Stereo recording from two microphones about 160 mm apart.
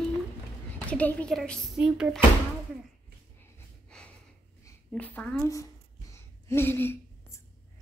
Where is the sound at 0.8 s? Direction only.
10° left (ahead or behind).